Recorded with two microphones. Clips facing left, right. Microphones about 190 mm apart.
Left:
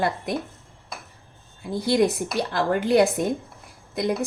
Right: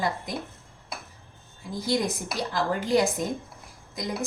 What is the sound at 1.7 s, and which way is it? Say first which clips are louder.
A woman's voice: left 6 dB; 65° left (ahead or behind).